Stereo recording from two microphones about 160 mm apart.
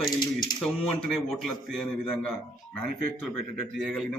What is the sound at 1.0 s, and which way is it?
A man's voice, centre (ahead or behind).